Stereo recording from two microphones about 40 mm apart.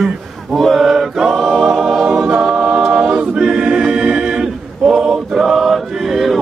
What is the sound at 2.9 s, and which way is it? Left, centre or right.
Choir, right.